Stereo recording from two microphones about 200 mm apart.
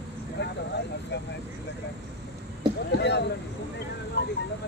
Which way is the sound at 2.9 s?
60° left (ahead or behind).